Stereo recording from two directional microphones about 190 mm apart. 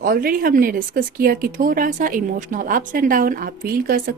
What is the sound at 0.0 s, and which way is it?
Speech, 50° right (ahead or behind).